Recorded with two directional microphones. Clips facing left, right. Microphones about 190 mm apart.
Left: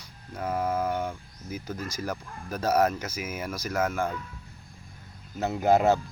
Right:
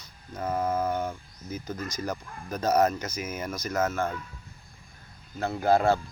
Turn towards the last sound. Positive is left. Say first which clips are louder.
# left 1 dB
turn(degrees=20)  # may be behind; listen again after turning